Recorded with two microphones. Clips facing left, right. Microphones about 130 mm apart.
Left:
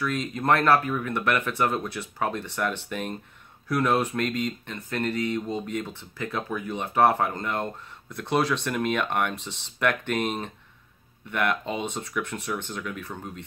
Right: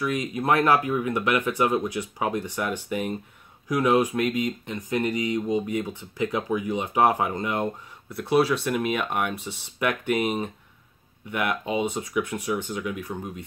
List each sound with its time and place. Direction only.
0.0 s speech: 15° right (ahead or behind)